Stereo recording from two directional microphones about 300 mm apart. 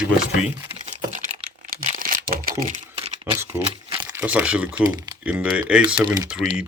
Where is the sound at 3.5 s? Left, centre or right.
Centre.